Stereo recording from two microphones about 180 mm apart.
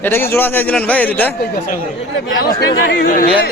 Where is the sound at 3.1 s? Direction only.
50° left (ahead or behind).